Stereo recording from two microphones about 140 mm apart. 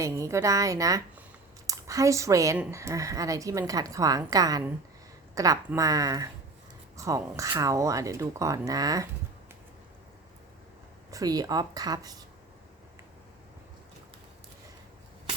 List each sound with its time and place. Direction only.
0.0 s speech: 20° right (ahead or behind)
11.1 s speech: 25° right (ahead or behind)